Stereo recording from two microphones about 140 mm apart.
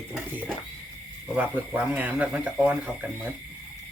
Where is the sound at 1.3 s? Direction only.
10° right (ahead or behind).